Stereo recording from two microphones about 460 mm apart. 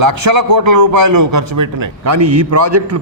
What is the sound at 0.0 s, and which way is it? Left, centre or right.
A man's voice, right.